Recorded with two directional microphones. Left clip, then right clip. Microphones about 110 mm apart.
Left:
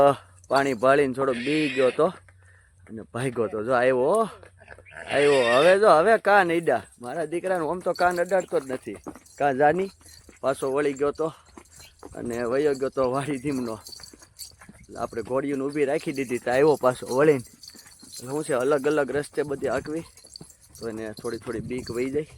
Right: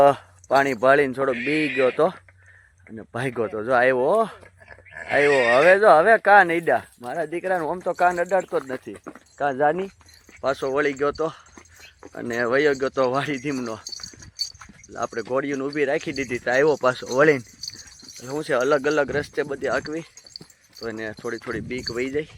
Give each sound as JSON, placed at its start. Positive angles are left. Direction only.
{"t": 0.5, "sound": "speech", "side_deg": 5}
{"t": 1.7, "sound": "speech", "side_deg": 25}
{"t": 2.0, "sound": "speech", "side_deg": 5}
{"t": 9.4, "sound": "speech", "side_deg": 45}
{"t": 10.4, "sound": "speech", "side_deg": 20}
{"t": 11.0, "sound": "speech", "side_deg": 5}
{"t": 12.1, "sound": "speech", "side_deg": -10}
{"t": 13.1, "sound": "speech", "side_deg": 10}
{"t": 14.9, "sound": "speech", "side_deg": 5}
{"t": 17.1, "sound": "speech", "side_deg": 15}
{"t": 20.3, "sound": "keys jangling", "side_deg": -10}
{"t": 21.0, "sound": "speech", "side_deg": 0}
{"t": 21.9, "sound": "speech", "side_deg": 10}